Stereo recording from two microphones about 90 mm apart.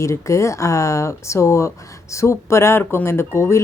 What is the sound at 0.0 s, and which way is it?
Speech, 35° left (ahead or behind).